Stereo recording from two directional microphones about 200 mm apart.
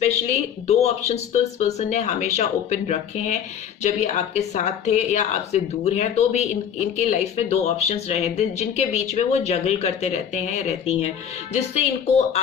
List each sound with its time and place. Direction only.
0.7 s speech: 35° left (ahead or behind)